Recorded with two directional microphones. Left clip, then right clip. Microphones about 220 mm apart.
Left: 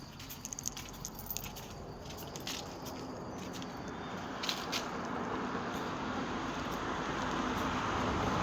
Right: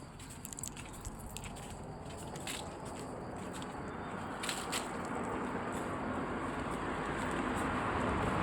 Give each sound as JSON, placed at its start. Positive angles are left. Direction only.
{"t": 4.5, "sound": "crushing", "side_deg": -30}
{"t": 5.1, "sound": "vehicle", "side_deg": 15}